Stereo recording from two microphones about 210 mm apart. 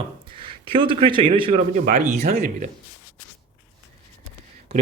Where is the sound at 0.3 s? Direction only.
25° right (ahead or behind).